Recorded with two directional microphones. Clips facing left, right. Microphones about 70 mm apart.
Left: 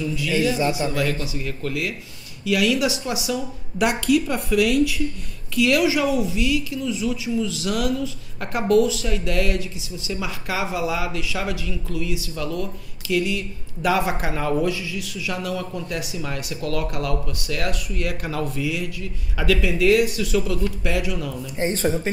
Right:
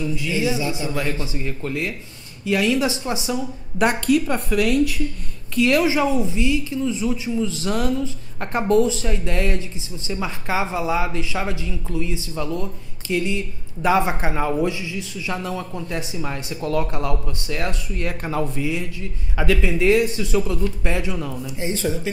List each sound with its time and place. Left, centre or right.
0.0 s speech: right
21.5 s speech: left